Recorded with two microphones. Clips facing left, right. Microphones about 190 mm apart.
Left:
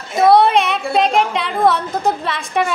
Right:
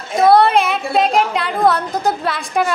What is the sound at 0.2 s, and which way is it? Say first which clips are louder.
A woman's voice: even; centre (ahead or behind).